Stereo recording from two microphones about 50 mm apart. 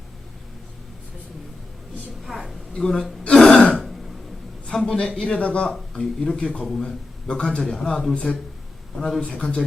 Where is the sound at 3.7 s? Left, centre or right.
Centre.